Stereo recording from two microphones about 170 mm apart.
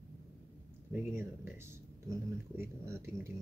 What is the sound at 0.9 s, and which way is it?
Speech, 15° right (ahead or behind).